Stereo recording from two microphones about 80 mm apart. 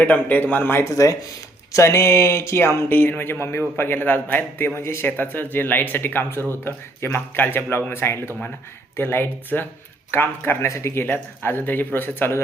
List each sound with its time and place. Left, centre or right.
0.0 s speech: left
0.9 s speech: left